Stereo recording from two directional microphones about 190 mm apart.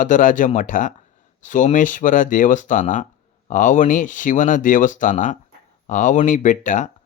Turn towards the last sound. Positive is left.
turn(degrees=40)  # may be behind; listen again after turning